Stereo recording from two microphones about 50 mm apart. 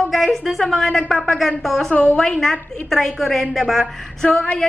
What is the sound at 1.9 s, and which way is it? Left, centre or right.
Speech, left.